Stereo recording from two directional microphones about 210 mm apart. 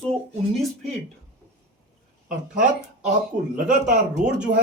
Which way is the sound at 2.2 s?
40° right (ahead or behind).